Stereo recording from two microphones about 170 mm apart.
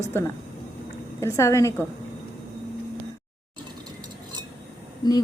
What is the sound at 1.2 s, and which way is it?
Speech, 20° left (ahead or behind).